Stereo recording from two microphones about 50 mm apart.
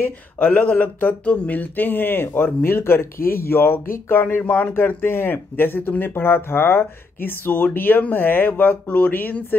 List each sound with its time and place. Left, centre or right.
0.4 s speech: left
4.4 s speech: left
4.7 s speech: left